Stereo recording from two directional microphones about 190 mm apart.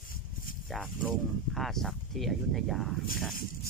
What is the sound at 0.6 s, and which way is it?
Speech, centre (ahead or behind).